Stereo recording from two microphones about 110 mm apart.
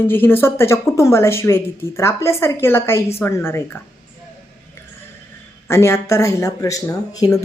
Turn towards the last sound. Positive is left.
turn(degrees=35)  # may be behind; listen again after turning